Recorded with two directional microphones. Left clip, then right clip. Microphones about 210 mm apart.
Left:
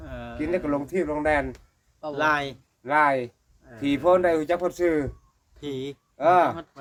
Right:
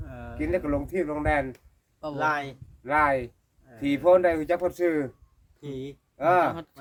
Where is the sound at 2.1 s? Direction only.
40° left (ahead or behind).